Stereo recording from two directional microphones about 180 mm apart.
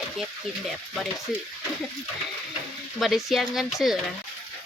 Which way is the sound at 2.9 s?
Centre (ahead or behind).